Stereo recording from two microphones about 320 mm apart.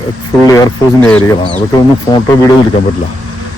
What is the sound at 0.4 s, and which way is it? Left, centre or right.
Speech, centre.